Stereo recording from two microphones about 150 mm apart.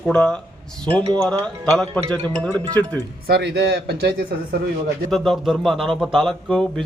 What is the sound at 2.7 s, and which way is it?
Speech, 25° right (ahead or behind).